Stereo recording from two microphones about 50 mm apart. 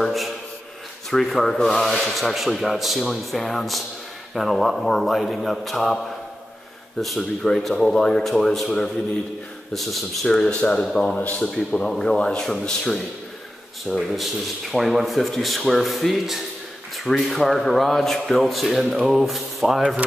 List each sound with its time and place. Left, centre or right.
0.0 s a sound: centre
1.1 s rub: centre
7.0 s rub: centre
9.8 s rub: centre
10.2 s speech: centre
11.1 s speech: left
11.4 s speech: centre
13.9 s rub: centre